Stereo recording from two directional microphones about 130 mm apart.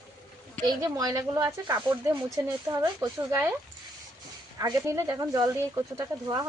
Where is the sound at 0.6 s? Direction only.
35° right (ahead or behind).